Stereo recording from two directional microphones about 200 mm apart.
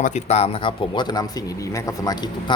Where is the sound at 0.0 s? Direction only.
35° left (ahead or behind).